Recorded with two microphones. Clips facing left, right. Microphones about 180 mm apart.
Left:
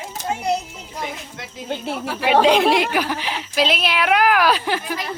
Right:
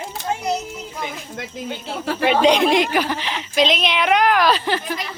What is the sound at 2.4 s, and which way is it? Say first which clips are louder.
Speech: even; 5° left (ahead or behind).